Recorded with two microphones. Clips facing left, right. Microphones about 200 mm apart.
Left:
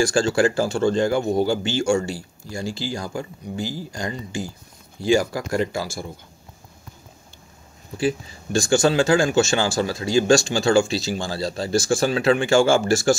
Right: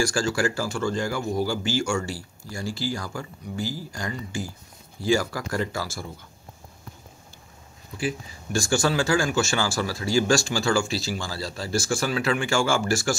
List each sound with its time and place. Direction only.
0.0 s speech: 25° left (ahead or behind)
8.0 s speech: 25° left (ahead or behind)